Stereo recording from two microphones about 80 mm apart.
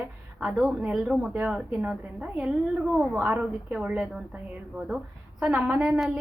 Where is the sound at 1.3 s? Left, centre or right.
Centre.